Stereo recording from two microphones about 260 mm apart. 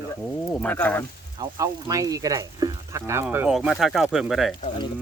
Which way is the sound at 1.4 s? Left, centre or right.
Centre.